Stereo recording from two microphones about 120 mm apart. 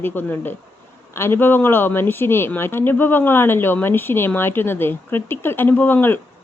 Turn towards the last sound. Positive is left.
turn(degrees=15)  # may be behind; listen again after turning